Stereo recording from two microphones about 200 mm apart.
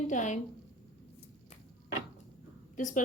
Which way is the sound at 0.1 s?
40° left (ahead or behind).